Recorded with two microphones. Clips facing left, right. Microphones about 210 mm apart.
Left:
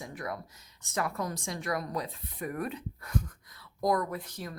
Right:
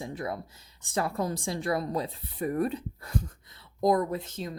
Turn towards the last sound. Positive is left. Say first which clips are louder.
# right 5 dB
turn(degrees=-25)  # may be behind; listen again after turning